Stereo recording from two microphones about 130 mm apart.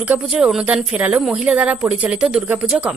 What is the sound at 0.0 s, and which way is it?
Speech, 10° right (ahead or behind).